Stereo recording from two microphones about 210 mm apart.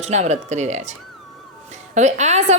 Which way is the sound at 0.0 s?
35° right (ahead or behind).